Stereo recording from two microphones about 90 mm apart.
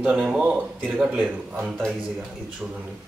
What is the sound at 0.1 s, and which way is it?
Speech, 10° right (ahead or behind).